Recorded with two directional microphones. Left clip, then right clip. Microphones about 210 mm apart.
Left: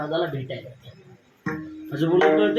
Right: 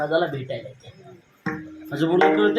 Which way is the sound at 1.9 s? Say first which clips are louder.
Even; 25° right (ahead or behind).